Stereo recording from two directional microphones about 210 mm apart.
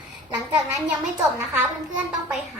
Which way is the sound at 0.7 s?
Centre (ahead or behind).